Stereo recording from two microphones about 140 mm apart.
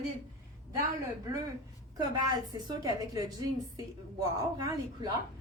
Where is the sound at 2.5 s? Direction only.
30° right (ahead or behind).